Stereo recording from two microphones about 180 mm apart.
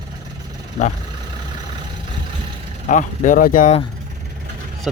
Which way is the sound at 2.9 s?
45° left (ahead or behind).